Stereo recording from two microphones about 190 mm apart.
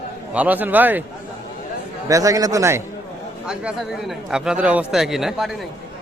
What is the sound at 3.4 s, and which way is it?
A man's voice, 5° right (ahead or behind).